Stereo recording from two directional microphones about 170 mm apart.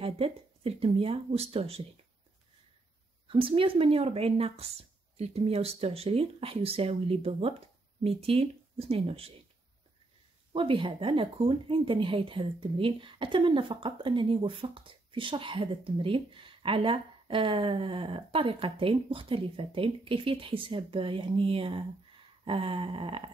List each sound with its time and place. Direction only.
0.0 s speech: 35° right (ahead or behind)
3.3 s speech: 30° right (ahead or behind)
10.5 s speech: 30° right (ahead or behind)